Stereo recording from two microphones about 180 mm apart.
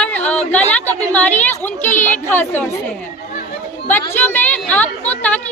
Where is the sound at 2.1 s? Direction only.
10° left (ahead or behind).